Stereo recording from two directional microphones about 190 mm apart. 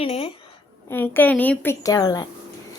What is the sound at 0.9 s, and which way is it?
A woman's voice, 10° left (ahead or behind).